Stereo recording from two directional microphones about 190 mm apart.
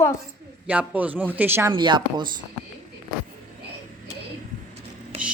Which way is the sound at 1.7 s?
25° right (ahead or behind).